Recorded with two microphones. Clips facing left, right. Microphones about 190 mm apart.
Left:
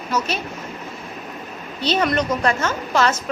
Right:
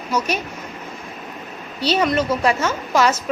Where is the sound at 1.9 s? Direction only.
5° right (ahead or behind).